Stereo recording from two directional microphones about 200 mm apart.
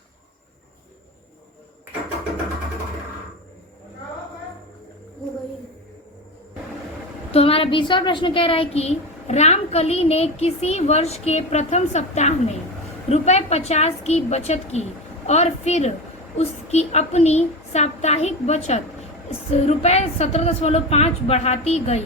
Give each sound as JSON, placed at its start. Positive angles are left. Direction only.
{"t": 7.3, "sound": "a woman's voice", "side_deg": 30}